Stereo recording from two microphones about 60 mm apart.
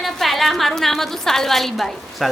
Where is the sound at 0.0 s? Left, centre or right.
Centre.